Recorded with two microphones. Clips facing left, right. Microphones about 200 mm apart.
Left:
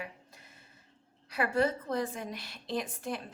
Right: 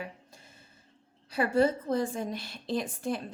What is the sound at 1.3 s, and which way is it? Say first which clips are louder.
A woman's voice: right 4 dB; 30° right (ahead or behind).